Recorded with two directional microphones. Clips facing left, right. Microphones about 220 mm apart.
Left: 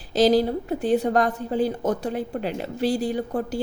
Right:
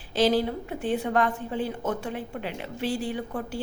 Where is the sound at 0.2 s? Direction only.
40° left (ahead or behind).